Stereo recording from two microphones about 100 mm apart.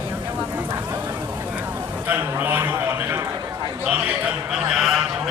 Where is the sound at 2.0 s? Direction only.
20° right (ahead or behind).